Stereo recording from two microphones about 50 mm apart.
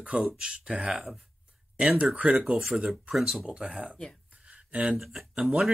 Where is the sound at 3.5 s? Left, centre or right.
Centre.